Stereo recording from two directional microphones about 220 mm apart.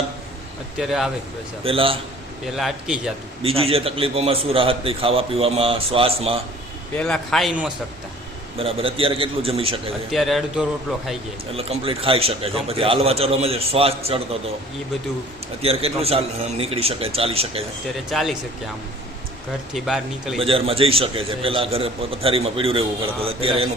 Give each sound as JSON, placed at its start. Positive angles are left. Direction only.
{"t": 0.8, "sound": "a man's voice", "side_deg": 0}
{"t": 1.6, "sound": "a man's voice", "side_deg": -25}
{"t": 2.6, "sound": "a man's voice", "side_deg": 0}
{"t": 3.4, "sound": "a man's voice", "side_deg": -25}
{"t": 6.9, "sound": "a man's voice", "side_deg": 5}
{"t": 8.5, "sound": "a man's voice", "side_deg": -25}
{"t": 10.1, "sound": "a man's voice", "side_deg": 0}
{"t": 11.5, "sound": "a man's voice", "side_deg": -25}
{"t": 15.6, "sound": "a man's voice", "side_deg": -25}
{"t": 18.1, "sound": "a man's voice", "side_deg": 0}
{"t": 19.7, "sound": "a man's voice", "side_deg": 0}
{"t": 20.4, "sound": "a man's voice", "side_deg": -25}